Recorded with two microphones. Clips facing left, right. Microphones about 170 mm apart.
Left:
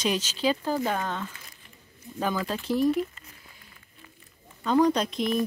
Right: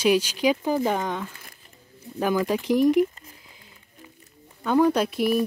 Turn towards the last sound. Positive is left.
turn(degrees=-10)  # may be behind; listen again after turning